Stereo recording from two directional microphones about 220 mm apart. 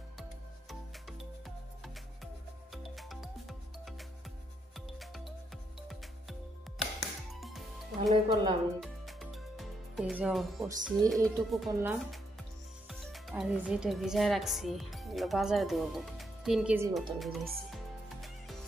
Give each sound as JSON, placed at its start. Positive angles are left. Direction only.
{"t": 2.7, "sound": "music", "side_deg": 0}
{"t": 7.2, "sound": "music", "side_deg": 0}
{"t": 8.3, "sound": "speech", "side_deg": -20}
{"t": 8.8, "sound": "music", "side_deg": 0}
{"t": 11.2, "sound": "a woman's voice", "side_deg": 0}